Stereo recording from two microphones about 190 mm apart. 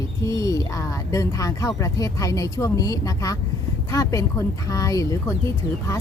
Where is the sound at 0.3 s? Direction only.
15° left (ahead or behind).